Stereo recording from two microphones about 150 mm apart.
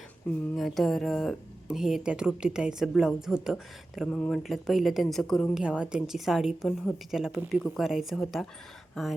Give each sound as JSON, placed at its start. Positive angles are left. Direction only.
{"t": 0.3, "sound": "speech", "side_deg": 0}
{"t": 5.6, "sound": "speech", "side_deg": -5}